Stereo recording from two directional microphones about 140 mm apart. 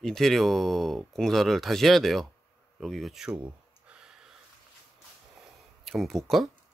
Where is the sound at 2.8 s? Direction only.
Centre (ahead or behind).